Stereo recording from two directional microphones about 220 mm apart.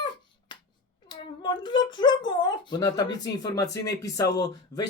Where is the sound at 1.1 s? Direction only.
20° left (ahead or behind).